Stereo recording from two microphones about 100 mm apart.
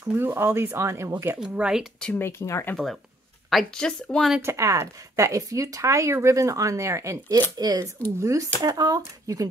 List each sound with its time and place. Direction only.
0.1 s speech: 25° right (ahead or behind)
1.5 s speech: 10° right (ahead or behind)
2.1 s speech: 25° left (ahead or behind)
2.7 s a woman's voice: centre (ahead or behind)
4.4 s speech: 30° right (ahead or behind)